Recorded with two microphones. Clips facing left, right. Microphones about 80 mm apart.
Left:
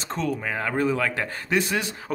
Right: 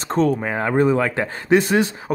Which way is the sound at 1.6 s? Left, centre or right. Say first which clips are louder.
Right 8 dB; right.